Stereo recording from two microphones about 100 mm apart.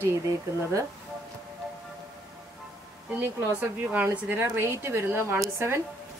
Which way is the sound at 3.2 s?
20° right (ahead or behind).